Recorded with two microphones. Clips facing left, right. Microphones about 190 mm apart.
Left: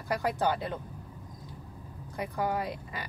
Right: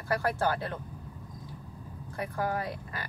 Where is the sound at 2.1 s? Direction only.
20° left (ahead or behind).